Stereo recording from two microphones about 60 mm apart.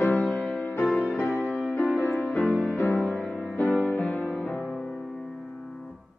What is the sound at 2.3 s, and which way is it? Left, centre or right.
Music, left.